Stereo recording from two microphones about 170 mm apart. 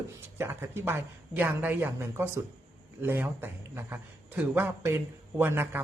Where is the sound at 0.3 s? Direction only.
15° right (ahead or behind).